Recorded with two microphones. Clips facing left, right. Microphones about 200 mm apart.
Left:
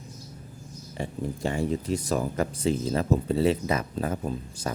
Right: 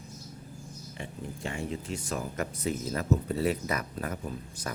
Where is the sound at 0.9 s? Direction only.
35° left (ahead or behind).